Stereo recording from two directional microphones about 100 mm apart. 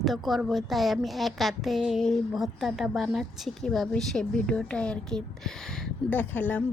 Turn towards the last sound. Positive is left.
turn(degrees=15)  # may be behind; listen again after turning